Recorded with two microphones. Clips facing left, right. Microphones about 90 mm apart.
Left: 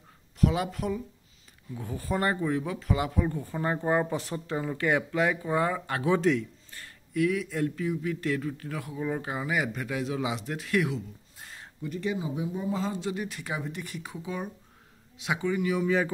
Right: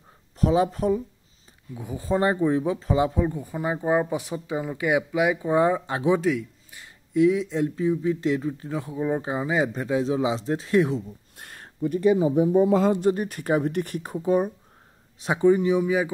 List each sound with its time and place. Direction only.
0.4 s speech: 30° right (ahead or behind)
1.8 s speech: 20° right (ahead or behind)
6.1 s a man's voice: 5° right (ahead or behind)
6.8 s speech: 20° right (ahead or behind)
11.3 s speech: 55° right (ahead or behind)
12.6 s speech: 65° right (ahead or behind); by 14.5 s 45° right (ahead or behind)
15.1 s speech: 35° right (ahead or behind)